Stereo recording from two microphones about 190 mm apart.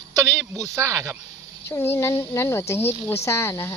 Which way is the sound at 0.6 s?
15° right (ahead or behind).